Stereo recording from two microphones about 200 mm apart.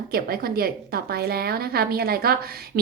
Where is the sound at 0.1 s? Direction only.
50° right (ahead or behind).